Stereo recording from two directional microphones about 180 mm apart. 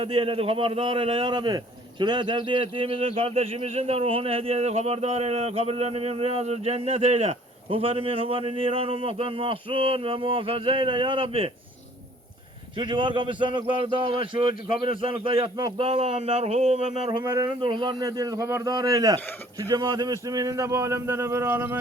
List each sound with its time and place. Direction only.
0.0 s a man's voice: 30° right (ahead or behind)
12.7 s a man's voice: 30° right (ahead or behind); by 21.8 s 10° right (ahead or behind)